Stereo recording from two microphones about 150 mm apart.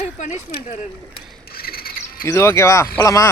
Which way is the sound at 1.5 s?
90° left.